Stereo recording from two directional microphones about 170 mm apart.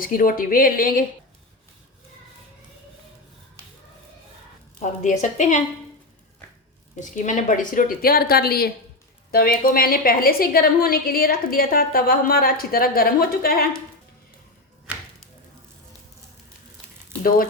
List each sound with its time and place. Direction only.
0.0 s a woman's voice: 55° left (ahead or behind)
4.8 s a woman's voice: 45° left (ahead or behind)
6.9 s a woman's voice: 45° left (ahead or behind)
14.9 s a sound: 10° right (ahead or behind)
17.2 s a woman's voice: 55° left (ahead or behind)